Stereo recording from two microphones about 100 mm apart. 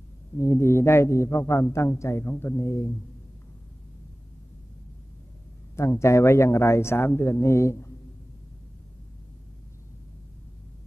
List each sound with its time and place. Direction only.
0.4 s speech: 25° left (ahead or behind)
5.8 s speech: 30° left (ahead or behind)